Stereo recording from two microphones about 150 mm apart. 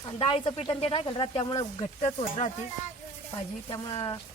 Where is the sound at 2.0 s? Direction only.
45° left (ahead or behind).